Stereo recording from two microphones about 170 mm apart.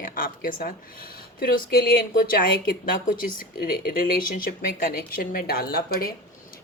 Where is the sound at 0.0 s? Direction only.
55° left (ahead or behind).